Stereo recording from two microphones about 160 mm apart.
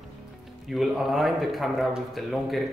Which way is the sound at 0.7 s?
Centre (ahead or behind).